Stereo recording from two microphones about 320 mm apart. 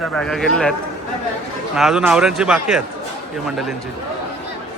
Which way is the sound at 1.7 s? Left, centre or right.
Centre.